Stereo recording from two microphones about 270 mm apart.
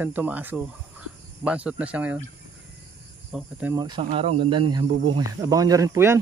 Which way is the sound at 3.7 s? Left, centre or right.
Centre.